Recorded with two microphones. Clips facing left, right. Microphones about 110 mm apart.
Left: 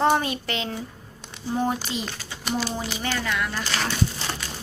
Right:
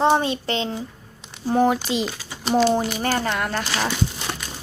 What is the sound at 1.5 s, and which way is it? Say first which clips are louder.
Speech: right 7 dB; 85° right.